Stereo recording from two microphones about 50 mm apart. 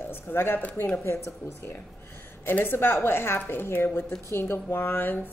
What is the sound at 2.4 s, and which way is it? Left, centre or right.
A woman's voice, left.